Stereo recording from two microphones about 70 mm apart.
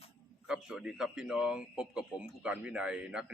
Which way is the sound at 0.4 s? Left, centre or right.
Centre.